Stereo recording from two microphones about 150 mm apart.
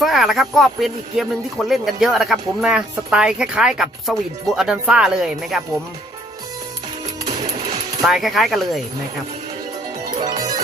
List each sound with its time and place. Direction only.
0.0 s speech: centre (ahead or behind)
8.0 s speech: centre (ahead or behind)
10.2 s music: 25° right (ahead or behind)